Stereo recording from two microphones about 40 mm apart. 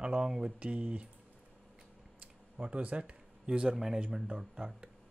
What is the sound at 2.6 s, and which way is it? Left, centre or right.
Speech, right.